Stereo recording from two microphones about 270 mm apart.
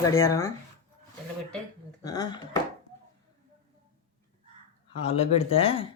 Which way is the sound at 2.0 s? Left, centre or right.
Centre.